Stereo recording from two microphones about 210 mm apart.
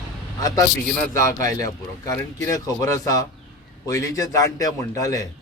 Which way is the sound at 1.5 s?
15° left (ahead or behind).